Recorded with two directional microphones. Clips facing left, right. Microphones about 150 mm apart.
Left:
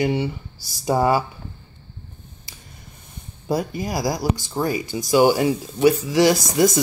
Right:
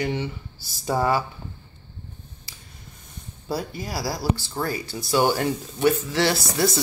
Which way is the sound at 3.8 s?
15° left (ahead or behind).